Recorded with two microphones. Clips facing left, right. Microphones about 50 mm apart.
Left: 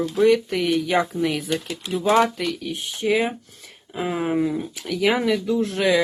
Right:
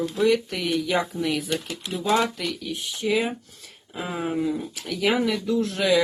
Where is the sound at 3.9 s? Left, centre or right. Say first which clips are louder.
Left 4 dB; left.